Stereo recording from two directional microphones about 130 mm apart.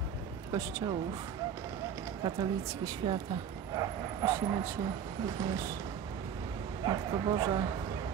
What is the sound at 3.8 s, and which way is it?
Speech, 20° right (ahead or behind).